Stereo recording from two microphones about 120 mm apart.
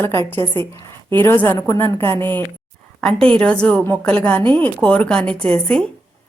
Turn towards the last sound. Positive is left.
turn(degrees=10)  # may be behind; listen again after turning